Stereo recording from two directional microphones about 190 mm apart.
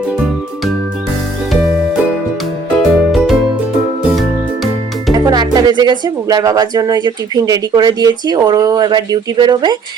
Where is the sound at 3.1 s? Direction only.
Centre (ahead or behind).